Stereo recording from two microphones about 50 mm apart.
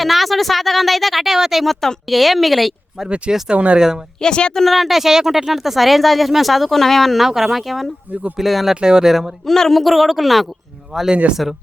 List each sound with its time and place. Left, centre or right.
0.0 s speech: centre
3.5 s speech: right
3.8 s speech: centre
4.2 s speech: centre
4.6 s speech: centre
8.7 s speech: centre
9.5 s speech: centre
10.9 s speech: centre
11.4 s speech: centre